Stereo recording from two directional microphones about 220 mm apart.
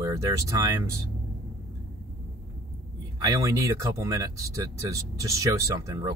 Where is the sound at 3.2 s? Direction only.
15° right (ahead or behind).